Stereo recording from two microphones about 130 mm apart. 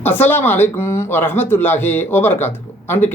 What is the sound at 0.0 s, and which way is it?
Speech, 15° left (ahead or behind).